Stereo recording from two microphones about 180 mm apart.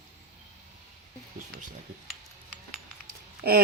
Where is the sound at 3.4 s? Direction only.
60° right (ahead or behind).